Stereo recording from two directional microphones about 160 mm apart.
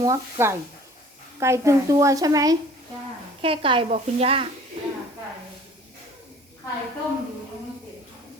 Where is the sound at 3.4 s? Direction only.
35° right (ahead or behind).